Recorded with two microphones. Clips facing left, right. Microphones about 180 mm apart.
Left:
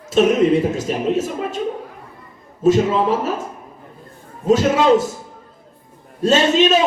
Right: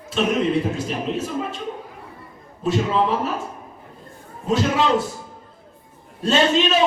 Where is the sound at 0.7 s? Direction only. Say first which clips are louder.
Left 6 dB; 40° left (ahead or behind).